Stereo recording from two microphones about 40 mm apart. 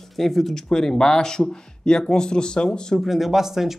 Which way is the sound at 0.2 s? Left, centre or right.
Centre.